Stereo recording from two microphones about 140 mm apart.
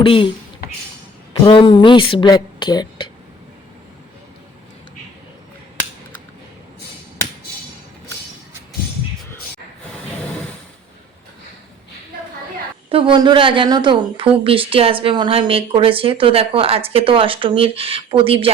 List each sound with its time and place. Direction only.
0.0 s speech: 40° left (ahead or behind)
1.3 s speech: 35° left (ahead or behind)
12.9 s a woman's voice: 35° right (ahead or behind)